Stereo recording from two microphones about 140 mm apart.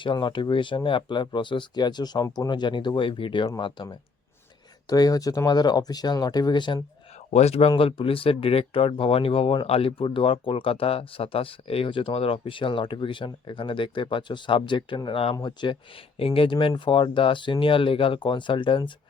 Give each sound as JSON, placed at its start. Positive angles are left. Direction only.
{"t": 0.0, "sound": "speech", "side_deg": 35}
{"t": 7.3, "sound": "speech", "side_deg": 45}